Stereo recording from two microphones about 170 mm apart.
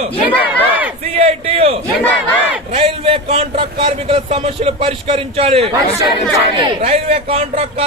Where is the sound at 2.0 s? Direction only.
10° left (ahead or behind).